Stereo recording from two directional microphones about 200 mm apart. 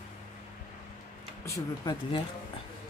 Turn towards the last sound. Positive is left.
turn(degrees=20)  # may be behind; listen again after turning